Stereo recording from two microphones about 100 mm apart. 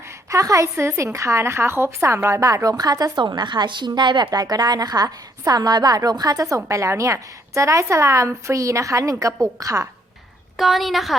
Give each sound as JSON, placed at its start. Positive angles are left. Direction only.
{"t": 0.3, "sound": "a woman's voice", "side_deg": -35}
{"t": 10.6, "sound": "a woman's voice", "side_deg": 0}